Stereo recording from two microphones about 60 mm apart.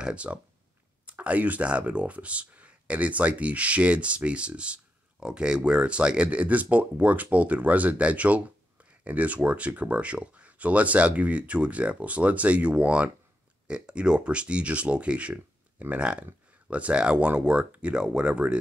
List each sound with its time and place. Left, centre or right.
0.0 s speech: centre